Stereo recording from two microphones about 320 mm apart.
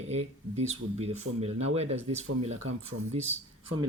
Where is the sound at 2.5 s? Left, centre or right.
Right.